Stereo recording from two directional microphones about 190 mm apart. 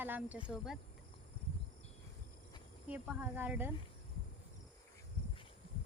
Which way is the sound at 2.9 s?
10° right (ahead or behind).